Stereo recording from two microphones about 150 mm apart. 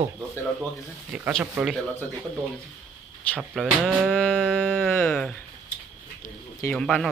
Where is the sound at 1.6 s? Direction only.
5° right (ahead or behind).